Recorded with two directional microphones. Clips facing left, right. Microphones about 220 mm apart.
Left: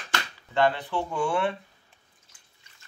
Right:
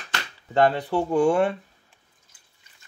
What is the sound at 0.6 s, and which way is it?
Speech, 40° right (ahead or behind).